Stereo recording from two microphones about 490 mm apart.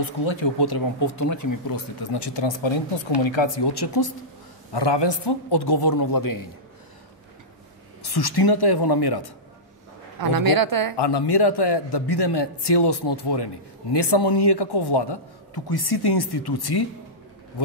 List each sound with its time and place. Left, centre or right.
0.0 s speech: left
8.0 s speech: left
10.2 s a woman's voice: right
11.0 s speech: left